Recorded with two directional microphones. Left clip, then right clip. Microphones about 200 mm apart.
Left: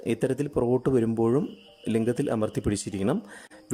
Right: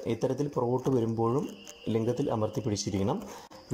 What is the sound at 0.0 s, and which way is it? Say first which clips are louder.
Speech: left 3 dB; 60° left (ahead or behind).